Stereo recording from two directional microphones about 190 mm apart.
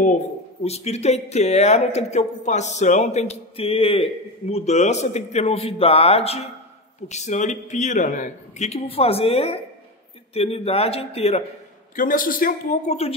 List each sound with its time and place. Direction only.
0.7 s speech: 35° left (ahead or behind)
11.9 s a man's voice: 45° left (ahead or behind)